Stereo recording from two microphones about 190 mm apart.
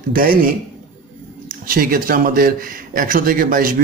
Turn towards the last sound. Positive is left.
turn(degrees=-45)  # may be behind; listen again after turning